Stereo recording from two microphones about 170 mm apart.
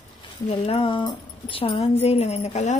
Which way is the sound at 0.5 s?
35° left (ahead or behind).